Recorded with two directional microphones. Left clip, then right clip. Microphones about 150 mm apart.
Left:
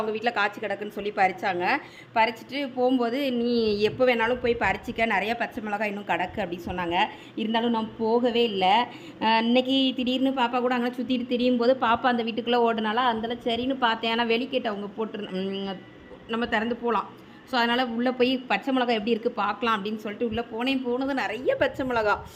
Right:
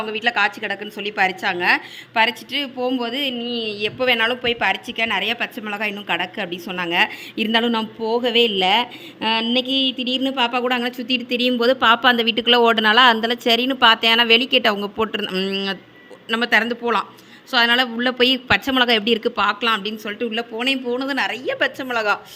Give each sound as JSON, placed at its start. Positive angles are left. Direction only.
{"t": 0.0, "sound": "a woman's voice", "side_deg": 5}
{"t": 3.4, "sound": "a sound", "side_deg": 25}
{"t": 4.0, "sound": "a woman's voice", "side_deg": 5}
{"t": 7.3, "sound": "a woman's voice", "side_deg": -15}
{"t": 10.2, "sound": "a woman's voice", "side_deg": -5}
{"t": 14.6, "sound": "a woman's voice", "side_deg": -20}